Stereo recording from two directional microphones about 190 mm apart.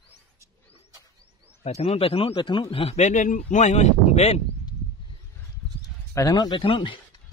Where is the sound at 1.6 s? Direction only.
35° left (ahead or behind).